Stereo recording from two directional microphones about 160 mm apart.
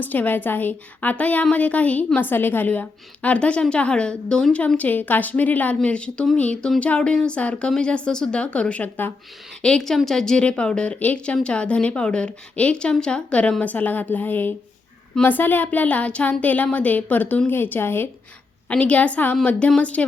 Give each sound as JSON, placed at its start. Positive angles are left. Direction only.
{"t": 0.0, "sound": "a woman's voice", "side_deg": 10}